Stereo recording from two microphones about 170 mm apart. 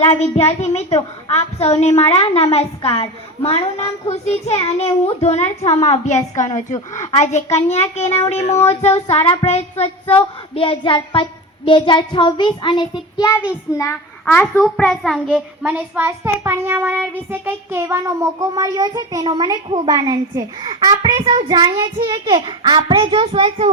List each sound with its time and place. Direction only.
0.0 s a woman's voice: 40° left (ahead or behind)
10.5 s child singing: 30° left (ahead or behind)
13.5 s a child's voice: 15° left (ahead or behind)
14.6 s a child's voice: centre (ahead or behind)
15.6 s a child's voice: 10° right (ahead or behind)
17.3 s child singing: 15° right (ahead or behind); by 23.6 s 30° right (ahead or behind)